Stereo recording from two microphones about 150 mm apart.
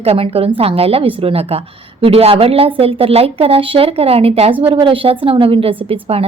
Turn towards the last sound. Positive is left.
turn(degrees=-40)  # may be behind; listen again after turning